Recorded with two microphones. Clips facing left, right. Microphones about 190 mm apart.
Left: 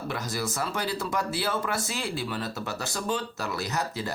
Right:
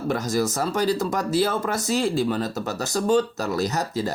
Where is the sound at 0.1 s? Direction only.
45° right (ahead or behind).